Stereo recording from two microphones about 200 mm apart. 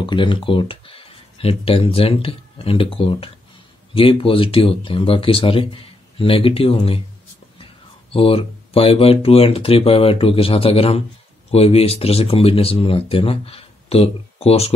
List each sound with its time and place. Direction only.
0.0 s speech: 25° left (ahead or behind)